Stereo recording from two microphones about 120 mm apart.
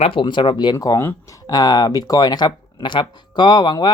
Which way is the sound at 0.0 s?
45° left (ahead or behind).